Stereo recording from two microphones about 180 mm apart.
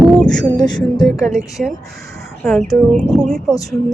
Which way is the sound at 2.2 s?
Centre (ahead or behind).